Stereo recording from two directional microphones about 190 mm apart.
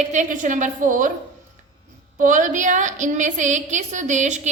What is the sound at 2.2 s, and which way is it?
A woman's voice, 40° right (ahead or behind).